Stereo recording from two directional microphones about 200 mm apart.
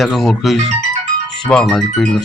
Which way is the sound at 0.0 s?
Centre (ahead or behind).